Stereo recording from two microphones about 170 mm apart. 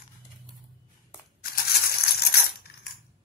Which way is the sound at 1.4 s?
65° left (ahead or behind).